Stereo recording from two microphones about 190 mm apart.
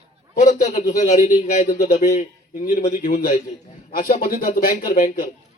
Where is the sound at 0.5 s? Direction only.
50° left (ahead or behind).